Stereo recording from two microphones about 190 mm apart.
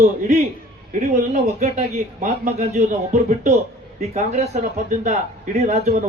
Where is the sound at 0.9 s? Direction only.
45° right (ahead or behind).